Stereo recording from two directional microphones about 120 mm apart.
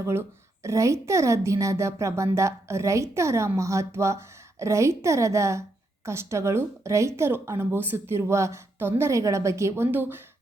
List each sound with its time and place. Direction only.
0.0 s a woman's voice: 20° right (ahead or behind)